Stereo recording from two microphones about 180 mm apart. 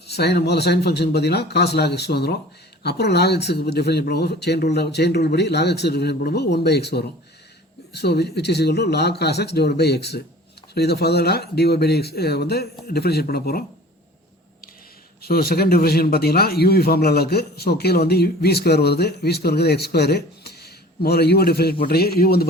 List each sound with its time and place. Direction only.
0.1 s a man's voice: 65° left (ahead or behind)
15.2 s a man's voice: 60° left (ahead or behind)